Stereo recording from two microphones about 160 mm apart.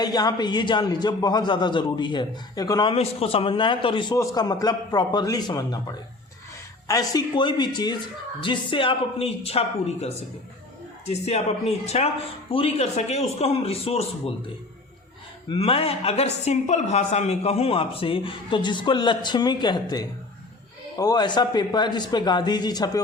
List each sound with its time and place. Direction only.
0.0 s a man's voice: 25° left (ahead or behind)
2.9 s a woman's voice: 40° left (ahead or behind)
4.1 s a man's voice: 20° left (ahead or behind); by 14.3 s 40° left (ahead or behind)
15.4 s a woman's voice: 35° left (ahead or behind)